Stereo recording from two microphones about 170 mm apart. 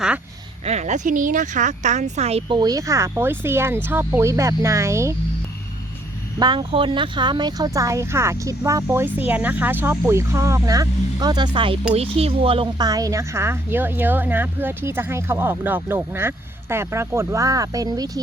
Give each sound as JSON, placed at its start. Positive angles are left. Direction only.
{"t": 0.6, "sound": "speech", "side_deg": -40}
{"t": 2.6, "sound": "a woman's voice", "side_deg": -20}
{"t": 6.4, "sound": "speech", "side_deg": -25}
{"t": 12.9, "sound": "a woman's voice", "side_deg": -20}